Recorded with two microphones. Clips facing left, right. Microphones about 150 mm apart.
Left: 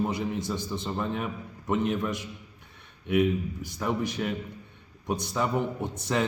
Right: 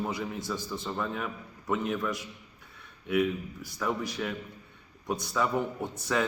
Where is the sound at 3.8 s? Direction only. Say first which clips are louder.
Left 2 dB; 25° left (ahead or behind).